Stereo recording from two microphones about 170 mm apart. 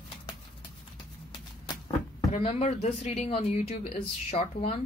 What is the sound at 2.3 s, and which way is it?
Speech, 45° left (ahead or behind).